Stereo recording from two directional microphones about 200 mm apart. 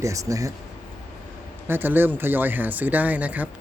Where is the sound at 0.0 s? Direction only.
15° right (ahead or behind).